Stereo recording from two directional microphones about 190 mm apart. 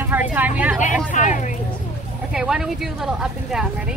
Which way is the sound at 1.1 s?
40° left (ahead or behind).